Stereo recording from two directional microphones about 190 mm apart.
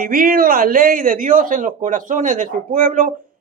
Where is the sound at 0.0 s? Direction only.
50° right (ahead or behind).